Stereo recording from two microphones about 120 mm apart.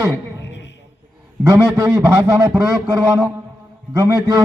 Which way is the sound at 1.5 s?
20° right (ahead or behind).